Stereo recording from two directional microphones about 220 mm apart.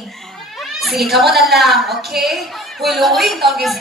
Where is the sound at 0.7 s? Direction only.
Centre (ahead or behind).